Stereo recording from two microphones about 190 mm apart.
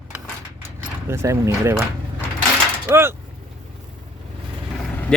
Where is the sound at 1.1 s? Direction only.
15° right (ahead or behind).